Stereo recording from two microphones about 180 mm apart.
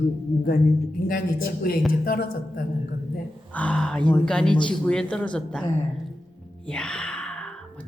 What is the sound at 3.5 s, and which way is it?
A man's voice, 5° left (ahead or behind).